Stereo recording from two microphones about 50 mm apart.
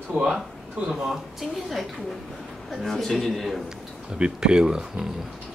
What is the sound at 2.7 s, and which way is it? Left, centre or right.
Speech, centre.